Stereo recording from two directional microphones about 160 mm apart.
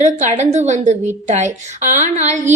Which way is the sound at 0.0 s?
50° right (ahead or behind).